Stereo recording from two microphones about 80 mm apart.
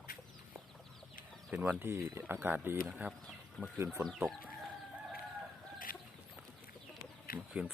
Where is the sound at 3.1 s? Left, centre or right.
Centre.